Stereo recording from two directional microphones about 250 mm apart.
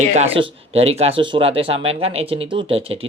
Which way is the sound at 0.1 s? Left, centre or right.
Right.